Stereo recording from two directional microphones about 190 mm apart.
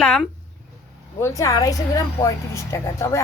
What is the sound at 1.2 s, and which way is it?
A woman's voice, 15° left (ahead or behind).